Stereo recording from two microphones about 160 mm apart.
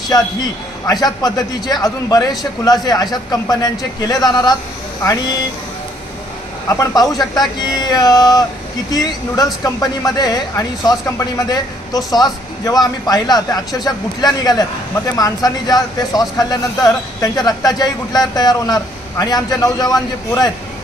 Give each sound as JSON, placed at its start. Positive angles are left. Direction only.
{"t": 0.1, "sound": "speech", "side_deg": 25}
{"t": 6.8, "sound": "speech", "side_deg": 25}